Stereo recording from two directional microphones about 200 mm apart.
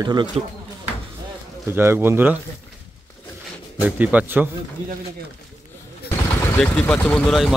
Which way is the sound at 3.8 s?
5° right (ahead or behind).